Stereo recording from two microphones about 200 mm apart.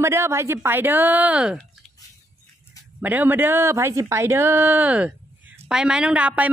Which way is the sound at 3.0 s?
10° right (ahead or behind).